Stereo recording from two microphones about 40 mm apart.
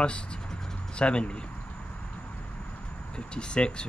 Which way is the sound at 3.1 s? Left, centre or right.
Left.